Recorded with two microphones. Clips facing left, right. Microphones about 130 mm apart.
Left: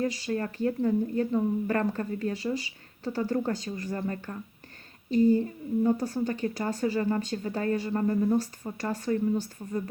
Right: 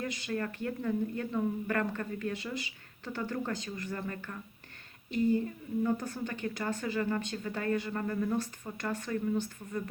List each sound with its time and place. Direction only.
0.0 s a woman's voice: 35° left (ahead or behind)